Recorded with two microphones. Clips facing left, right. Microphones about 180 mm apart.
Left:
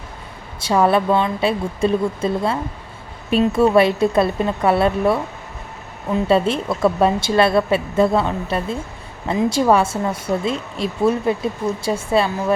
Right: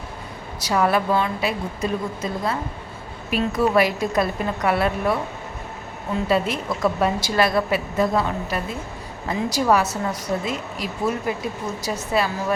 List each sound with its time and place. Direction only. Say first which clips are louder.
0.6 s a woman's voice: left 4 dB; 25° left (ahead or behind)
6.2 s a woman's voice: left 5 dB; 30° left (ahead or behind)